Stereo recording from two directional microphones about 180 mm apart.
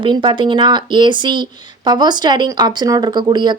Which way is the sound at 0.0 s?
25° right (ahead or behind).